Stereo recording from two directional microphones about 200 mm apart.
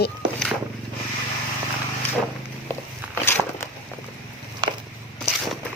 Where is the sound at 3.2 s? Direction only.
10° left (ahead or behind).